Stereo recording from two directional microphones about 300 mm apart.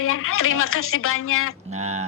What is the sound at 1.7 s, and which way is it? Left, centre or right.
Speech, right.